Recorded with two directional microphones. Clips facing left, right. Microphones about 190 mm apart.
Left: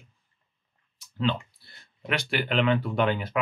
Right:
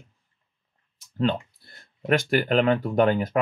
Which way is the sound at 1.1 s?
45° right (ahead or behind).